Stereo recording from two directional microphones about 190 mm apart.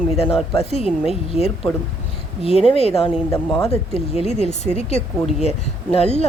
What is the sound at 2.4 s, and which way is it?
Speech, 30° left (ahead or behind).